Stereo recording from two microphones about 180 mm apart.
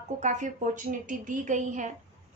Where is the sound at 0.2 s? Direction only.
40° right (ahead or behind).